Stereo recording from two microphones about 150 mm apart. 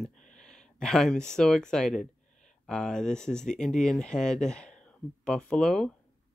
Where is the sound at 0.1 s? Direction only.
55° left (ahead or behind).